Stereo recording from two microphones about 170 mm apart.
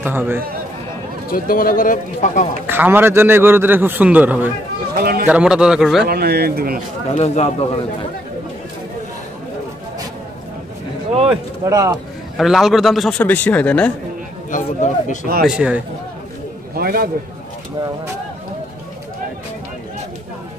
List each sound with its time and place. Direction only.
0.0 s a man's voice: 10° right (ahead or behind)
1.3 s speech: 55° left (ahead or behind)
2.7 s a man's voice: 10° right (ahead or behind)
4.9 s speech: 65° right (ahead or behind)
5.2 s a man's voice: 5° right (ahead or behind)
6.0 s speech: 65° right (ahead or behind)
7.1 s speech: 40° left (ahead or behind)
11.6 s speech: 20° right (ahead or behind)
12.4 s a man's voice: centre (ahead or behind)
14.5 s speech: 50° left (ahead or behind)
15.4 s a man's voice: 5° right (ahead or behind)
16.7 s a man's voice: 60° right (ahead or behind)